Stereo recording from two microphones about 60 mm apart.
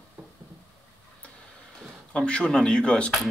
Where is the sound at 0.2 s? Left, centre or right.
Right.